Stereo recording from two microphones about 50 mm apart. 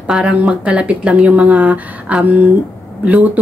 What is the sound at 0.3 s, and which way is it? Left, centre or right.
Speech, right.